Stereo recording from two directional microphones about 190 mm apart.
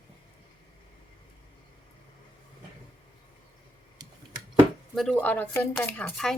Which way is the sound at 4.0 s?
20° right (ahead or behind).